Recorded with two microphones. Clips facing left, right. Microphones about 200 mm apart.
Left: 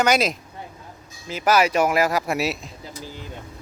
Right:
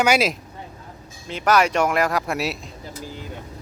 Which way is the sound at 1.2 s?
5° left (ahead or behind).